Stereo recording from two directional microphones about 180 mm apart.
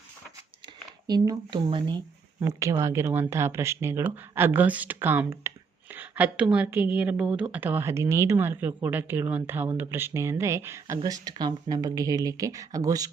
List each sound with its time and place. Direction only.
1.0 s speech: 20° right (ahead or behind)